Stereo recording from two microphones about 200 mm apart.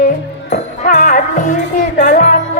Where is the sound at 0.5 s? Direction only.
35° left (ahead or behind).